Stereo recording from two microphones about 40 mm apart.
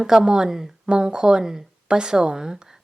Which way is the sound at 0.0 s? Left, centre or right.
Centre.